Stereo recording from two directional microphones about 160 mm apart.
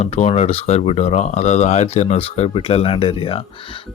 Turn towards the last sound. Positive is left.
turn(degrees=35)  # may be behind; listen again after turning